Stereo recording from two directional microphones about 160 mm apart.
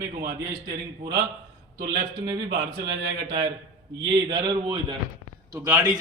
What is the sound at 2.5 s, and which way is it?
Speech, 90° right.